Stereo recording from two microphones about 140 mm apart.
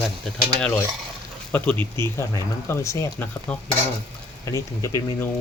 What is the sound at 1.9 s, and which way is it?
Speech, 20° left (ahead or behind).